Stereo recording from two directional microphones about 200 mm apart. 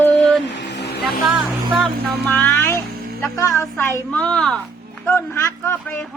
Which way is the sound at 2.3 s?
10° left (ahead or behind).